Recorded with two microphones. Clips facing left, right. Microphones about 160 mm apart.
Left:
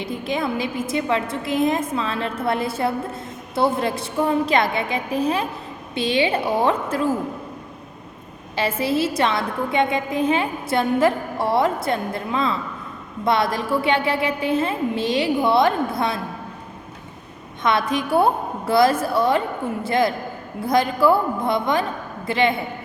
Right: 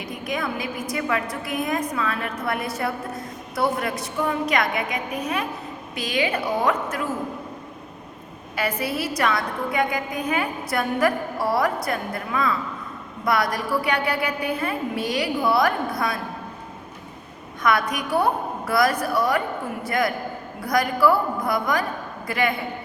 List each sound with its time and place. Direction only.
0.0 s a woman's voice: 25° left (ahead or behind)
8.5 s a woman's voice: 25° left (ahead or behind)
17.6 s a woman's voice: 25° left (ahead or behind)